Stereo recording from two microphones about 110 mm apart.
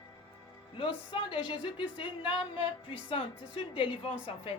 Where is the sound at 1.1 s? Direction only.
50° left (ahead or behind).